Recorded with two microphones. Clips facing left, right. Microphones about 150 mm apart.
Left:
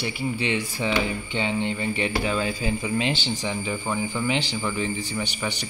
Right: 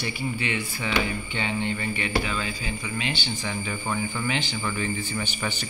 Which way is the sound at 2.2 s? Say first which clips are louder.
Left 6 dB; 40° left (ahead or behind).